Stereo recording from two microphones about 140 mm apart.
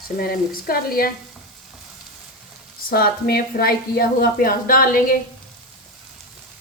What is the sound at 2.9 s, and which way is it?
A woman's voice, 90° left.